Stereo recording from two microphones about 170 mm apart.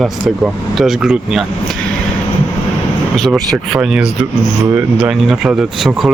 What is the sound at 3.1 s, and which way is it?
Speech, centre (ahead or behind).